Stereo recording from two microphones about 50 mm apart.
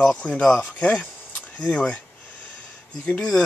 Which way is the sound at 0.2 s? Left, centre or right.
Left.